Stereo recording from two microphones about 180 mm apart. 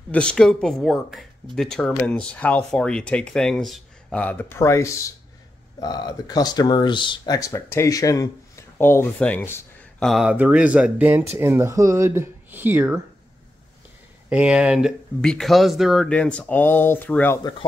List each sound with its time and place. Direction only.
0.1 s speech: 5° left (ahead or behind); by 13.0 s 10° right (ahead or behind)
14.3 s speech: 5° right (ahead or behind)
17.4 s speech: 20° left (ahead or behind)